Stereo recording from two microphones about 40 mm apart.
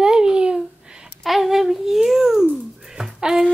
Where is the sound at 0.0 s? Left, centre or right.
Centre.